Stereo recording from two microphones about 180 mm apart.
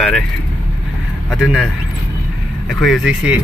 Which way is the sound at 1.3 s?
5° right (ahead or behind).